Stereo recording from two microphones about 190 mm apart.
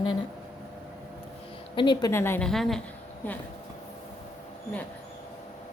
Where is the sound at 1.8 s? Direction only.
25° left (ahead or behind).